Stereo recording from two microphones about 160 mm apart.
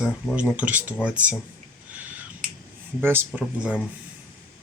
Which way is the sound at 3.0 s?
10° right (ahead or behind).